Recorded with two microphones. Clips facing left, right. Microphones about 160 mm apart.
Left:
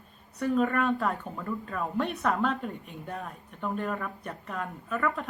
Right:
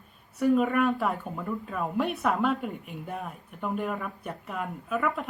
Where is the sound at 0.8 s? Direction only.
Centre (ahead or behind).